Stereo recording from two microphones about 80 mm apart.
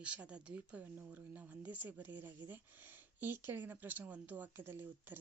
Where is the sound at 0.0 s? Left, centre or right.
Centre.